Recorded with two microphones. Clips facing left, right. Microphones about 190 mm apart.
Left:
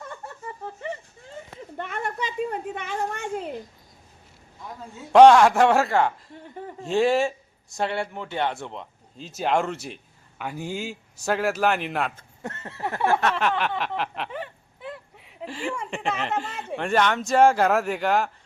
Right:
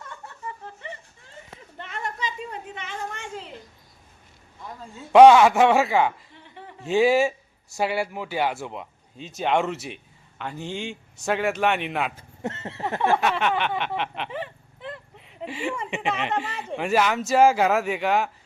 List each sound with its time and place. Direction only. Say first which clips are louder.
1.8 s a sound: left 2 dB; 55° left (ahead or behind)
4.9 s speech: right 1 dB; centre (ahead or behind)
6.3 s a sound: left 7 dB; 45° left (ahead or behind)
6.8 s speech: right 2 dB; 5° right (ahead or behind)
12.1 s speech: right 4 dB; 20° right (ahead or behind)
13.1 s speech: even; centre (ahead or behind)